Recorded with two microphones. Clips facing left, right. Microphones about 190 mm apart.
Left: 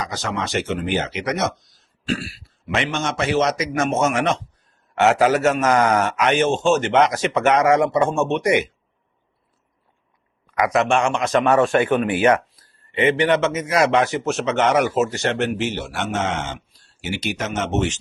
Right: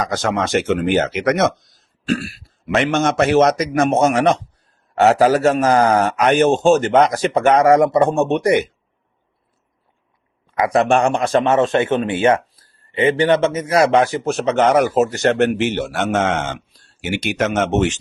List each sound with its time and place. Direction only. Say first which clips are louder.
0.0 s a man's voice: right 6 dB; 50° right (ahead or behind)
10.5 s a man's voice: right 3 dB; 30° right (ahead or behind); by 17.9 s 55° right (ahead or behind)